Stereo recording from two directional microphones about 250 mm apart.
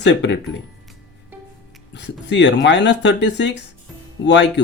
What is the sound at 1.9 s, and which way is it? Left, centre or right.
Speech, left.